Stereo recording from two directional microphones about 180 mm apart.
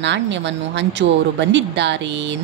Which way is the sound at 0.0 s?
80° right.